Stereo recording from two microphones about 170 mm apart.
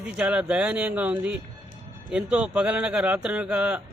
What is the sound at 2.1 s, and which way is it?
Speech, 5° right (ahead or behind).